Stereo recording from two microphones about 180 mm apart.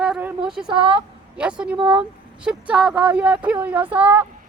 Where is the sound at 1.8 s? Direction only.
25° right (ahead or behind).